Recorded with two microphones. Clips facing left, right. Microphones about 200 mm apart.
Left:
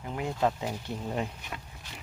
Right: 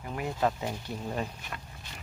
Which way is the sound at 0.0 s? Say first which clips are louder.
Left 1 dB; 15° left (ahead or behind).